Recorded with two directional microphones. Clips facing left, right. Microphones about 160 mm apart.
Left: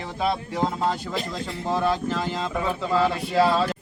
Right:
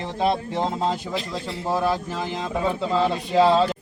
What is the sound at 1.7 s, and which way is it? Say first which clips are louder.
Speech: even; 10° right (ahead or behind).